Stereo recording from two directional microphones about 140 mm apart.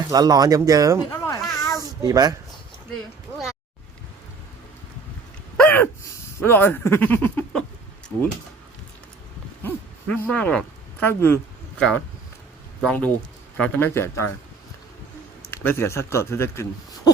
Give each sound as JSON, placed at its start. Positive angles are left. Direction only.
{"t": 0.1, "sound": "speech", "side_deg": -30}
{"t": 1.1, "sound": "a sound", "side_deg": 25}
{"t": 2.0, "sound": "speech", "side_deg": -25}
{"t": 5.5, "sound": "gasp", "side_deg": 10}
{"t": 6.4, "sound": "speech", "side_deg": 15}
{"t": 10.1, "sound": "speech", "side_deg": 10}
{"t": 11.8, "sound": "speech", "side_deg": 5}
{"t": 15.4, "sound": "speech", "side_deg": 15}